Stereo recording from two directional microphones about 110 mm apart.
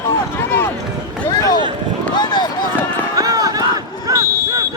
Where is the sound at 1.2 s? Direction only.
30° left (ahead or behind).